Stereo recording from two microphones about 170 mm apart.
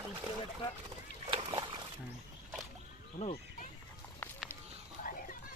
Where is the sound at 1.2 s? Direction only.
35° right (ahead or behind).